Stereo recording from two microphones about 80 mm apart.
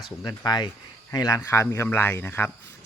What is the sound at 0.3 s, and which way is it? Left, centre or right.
Speech, left.